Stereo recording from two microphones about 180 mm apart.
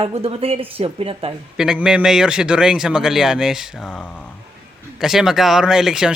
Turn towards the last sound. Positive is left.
turn(degrees=-5)  # may be behind; listen again after turning